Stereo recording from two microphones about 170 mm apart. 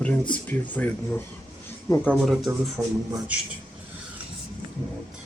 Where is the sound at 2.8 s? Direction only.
20° right (ahead or behind).